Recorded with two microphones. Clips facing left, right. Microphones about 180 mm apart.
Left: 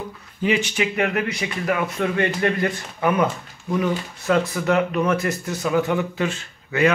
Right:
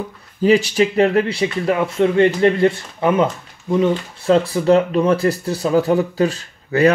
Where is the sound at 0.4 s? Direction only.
35° right (ahead or behind).